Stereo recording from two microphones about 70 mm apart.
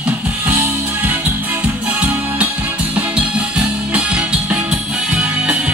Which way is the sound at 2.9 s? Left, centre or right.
Centre.